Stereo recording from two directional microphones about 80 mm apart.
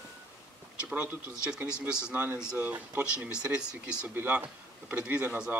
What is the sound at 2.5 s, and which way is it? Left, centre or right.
Speech, right.